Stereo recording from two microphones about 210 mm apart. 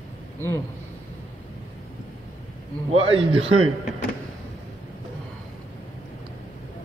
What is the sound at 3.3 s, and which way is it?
Speech, 80° right.